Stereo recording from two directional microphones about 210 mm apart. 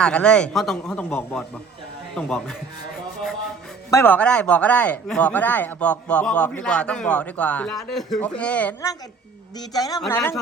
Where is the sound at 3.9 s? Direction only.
10° left (ahead or behind).